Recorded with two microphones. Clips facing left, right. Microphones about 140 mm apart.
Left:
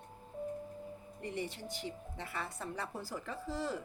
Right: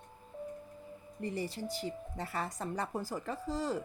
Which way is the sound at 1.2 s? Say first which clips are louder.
Right 4 dB; 35° right (ahead or behind).